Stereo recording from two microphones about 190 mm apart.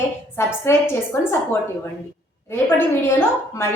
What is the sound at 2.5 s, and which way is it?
A woman's voice, 10° left (ahead or behind).